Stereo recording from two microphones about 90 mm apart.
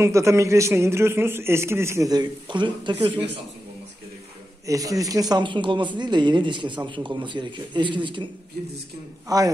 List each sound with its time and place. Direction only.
0.0 s speech: 35° right (ahead or behind)
2.0 s a woman's voice: 55° right (ahead or behind)
4.6 s speech: 40° right (ahead or behind)
5.4 s a woman's voice: 65° right (ahead or behind)
9.3 s a man's voice: 40° right (ahead or behind)